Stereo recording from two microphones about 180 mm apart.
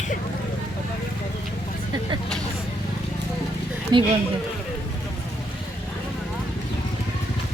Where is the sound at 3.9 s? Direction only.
25° right (ahead or behind).